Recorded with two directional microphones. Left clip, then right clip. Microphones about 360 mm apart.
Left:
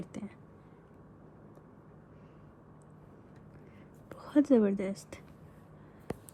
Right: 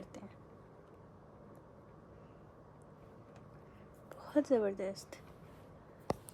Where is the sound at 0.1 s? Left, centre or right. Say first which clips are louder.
Left 8 dB; centre.